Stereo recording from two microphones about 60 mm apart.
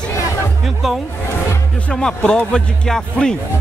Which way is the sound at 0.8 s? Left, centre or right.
Centre.